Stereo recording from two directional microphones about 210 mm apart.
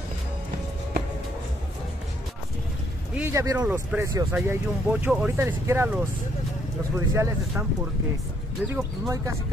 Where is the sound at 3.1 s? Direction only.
15° right (ahead or behind).